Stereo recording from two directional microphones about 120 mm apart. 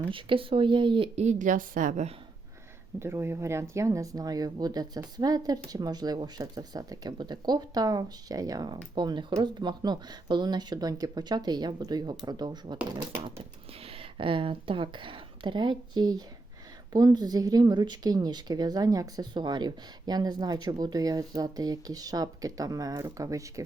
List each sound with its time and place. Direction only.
0.1 s speech: 45° right (ahead or behind)
1.2 s a woman's voice: 80° right
3.0 s a woman's voice: 20° right (ahead or behind); by 12.8 s 35° right (ahead or behind)
13.8 s a woman's voice: 50° right (ahead or behind); by 23.6 s 25° right (ahead or behind)